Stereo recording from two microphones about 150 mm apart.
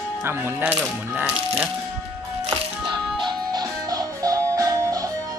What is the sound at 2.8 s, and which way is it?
Music, centre (ahead or behind).